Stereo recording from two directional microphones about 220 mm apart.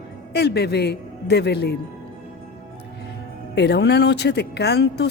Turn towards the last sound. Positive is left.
turn(degrees=50)  # may be behind; listen again after turning